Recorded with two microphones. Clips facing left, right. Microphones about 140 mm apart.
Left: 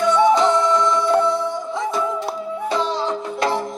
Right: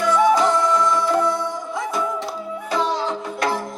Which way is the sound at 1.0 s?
25° left (ahead or behind).